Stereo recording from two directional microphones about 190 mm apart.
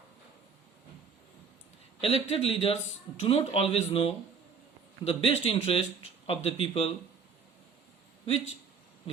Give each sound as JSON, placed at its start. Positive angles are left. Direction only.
{"t": 2.0, "sound": "a man's voice", "side_deg": 30}